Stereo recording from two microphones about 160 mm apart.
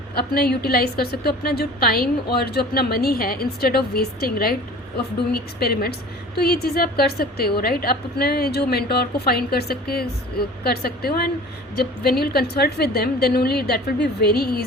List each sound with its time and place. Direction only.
0.1 s a woman's voice: 80° left